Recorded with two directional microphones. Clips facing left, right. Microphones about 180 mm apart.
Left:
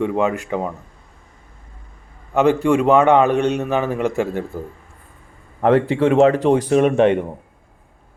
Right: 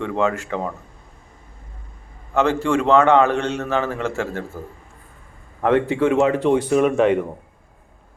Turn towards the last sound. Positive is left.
turn(degrees=25)  # may be behind; listen again after turning